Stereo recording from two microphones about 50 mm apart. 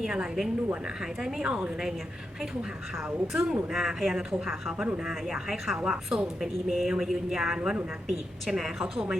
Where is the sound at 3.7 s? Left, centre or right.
Centre.